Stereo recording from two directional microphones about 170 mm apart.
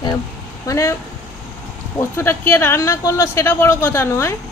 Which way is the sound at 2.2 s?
15° left (ahead or behind).